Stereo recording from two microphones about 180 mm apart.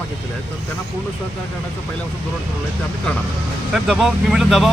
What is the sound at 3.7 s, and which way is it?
Speech, centre (ahead or behind).